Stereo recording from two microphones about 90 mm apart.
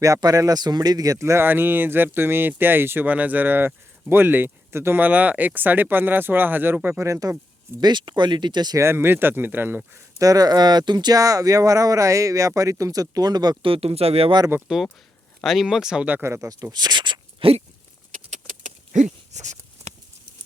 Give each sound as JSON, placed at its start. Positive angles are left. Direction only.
{"t": 0.0, "sound": "speech", "side_deg": -40}
{"t": 7.8, "sound": "speech", "side_deg": -55}
{"t": 8.8, "sound": "speech", "side_deg": -25}
{"t": 10.2, "sound": "speech", "side_deg": -40}
{"t": 13.6, "sound": "speech", "side_deg": -90}
{"t": 14.7, "sound": "speech", "side_deg": -10}
{"t": 16.0, "sound": "speech", "side_deg": -20}
{"t": 16.3, "sound": "speech", "side_deg": -40}
{"t": 16.7, "sound": "a sound", "side_deg": -55}